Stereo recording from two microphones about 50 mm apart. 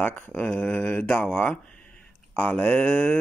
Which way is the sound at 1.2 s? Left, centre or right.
Left.